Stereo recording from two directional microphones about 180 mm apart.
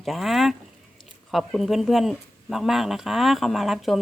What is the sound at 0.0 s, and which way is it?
Speech, centre (ahead or behind).